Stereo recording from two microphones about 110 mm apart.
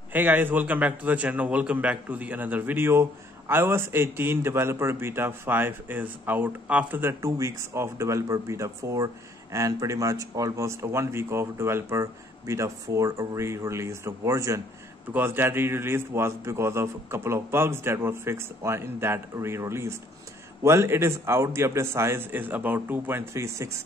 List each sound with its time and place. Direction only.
0.1 s a man's voice: 15° right (ahead or behind)